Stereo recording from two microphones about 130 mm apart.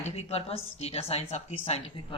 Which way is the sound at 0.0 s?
55° left (ahead or behind).